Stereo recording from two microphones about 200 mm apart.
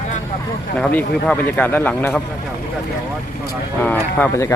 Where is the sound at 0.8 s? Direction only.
5° left (ahead or behind).